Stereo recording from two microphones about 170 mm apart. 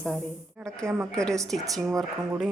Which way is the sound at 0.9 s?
15° right (ahead or behind).